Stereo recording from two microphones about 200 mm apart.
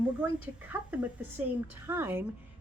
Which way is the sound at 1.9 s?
10° right (ahead or behind).